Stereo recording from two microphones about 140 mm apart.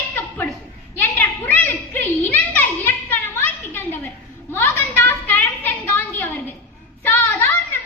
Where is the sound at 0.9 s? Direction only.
15° left (ahead or behind).